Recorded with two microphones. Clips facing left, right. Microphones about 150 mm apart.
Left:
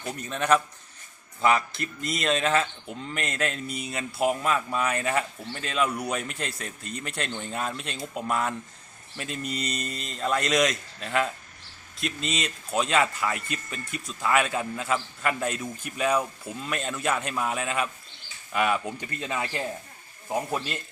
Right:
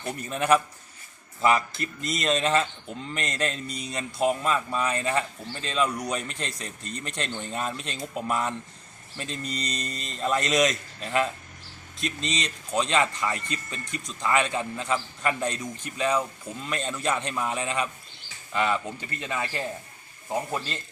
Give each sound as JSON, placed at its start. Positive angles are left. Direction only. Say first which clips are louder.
{"t": 0.0, "sound": "a man's voice", "louder": "right 1 dB", "side_deg": -5}